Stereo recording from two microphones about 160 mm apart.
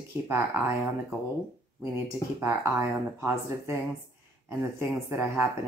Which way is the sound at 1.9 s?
15° right (ahead or behind).